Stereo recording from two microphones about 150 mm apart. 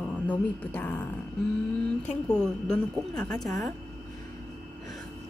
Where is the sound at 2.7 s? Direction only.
5° left (ahead or behind).